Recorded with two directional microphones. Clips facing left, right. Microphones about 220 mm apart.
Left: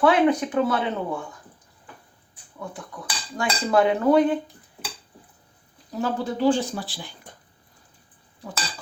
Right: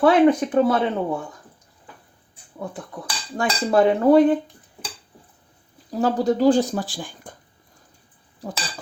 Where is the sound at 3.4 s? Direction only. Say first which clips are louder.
Right 2 dB; 35° right (ahead or behind).